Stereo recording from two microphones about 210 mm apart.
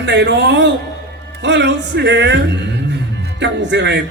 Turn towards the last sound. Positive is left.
turn(degrees=-55)  # may be behind; listen again after turning